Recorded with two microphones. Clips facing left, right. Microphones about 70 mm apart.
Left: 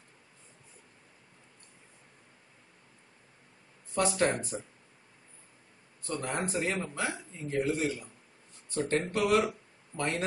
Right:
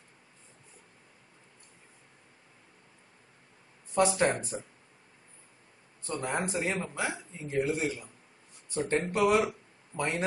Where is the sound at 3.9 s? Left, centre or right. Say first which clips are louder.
Right 2 dB; right.